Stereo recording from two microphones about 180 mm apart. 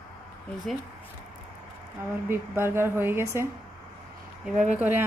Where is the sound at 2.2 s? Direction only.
15° right (ahead or behind).